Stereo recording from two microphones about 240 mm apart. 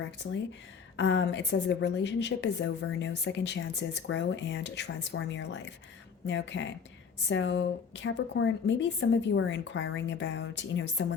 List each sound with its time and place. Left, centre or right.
0.9 s a woman's voice: left